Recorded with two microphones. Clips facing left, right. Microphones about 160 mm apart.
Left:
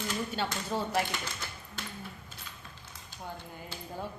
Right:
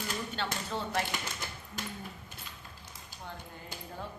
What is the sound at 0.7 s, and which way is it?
Speech, 10° left (ahead or behind).